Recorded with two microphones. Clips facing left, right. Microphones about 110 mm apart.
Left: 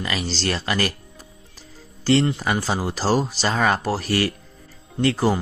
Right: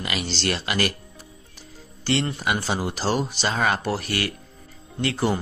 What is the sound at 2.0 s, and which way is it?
Speech, 35° left (ahead or behind).